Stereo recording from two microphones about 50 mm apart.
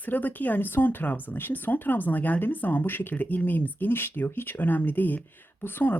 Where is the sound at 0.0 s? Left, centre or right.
Left.